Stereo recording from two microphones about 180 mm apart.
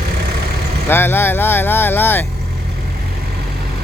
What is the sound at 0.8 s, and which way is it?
Vehicle, 10° left (ahead or behind).